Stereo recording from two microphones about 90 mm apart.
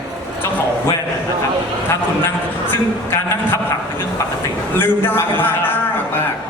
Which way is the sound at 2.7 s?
25° left (ahead or behind).